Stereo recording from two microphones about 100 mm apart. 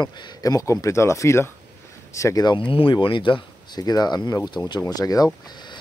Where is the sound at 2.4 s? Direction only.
55° left (ahead or behind).